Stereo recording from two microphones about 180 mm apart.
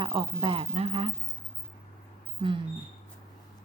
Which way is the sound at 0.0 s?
30° right (ahead or behind).